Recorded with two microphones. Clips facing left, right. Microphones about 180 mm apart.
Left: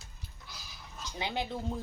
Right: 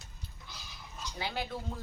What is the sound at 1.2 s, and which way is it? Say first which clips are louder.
Speech: left 2 dB; 20° left (ahead or behind).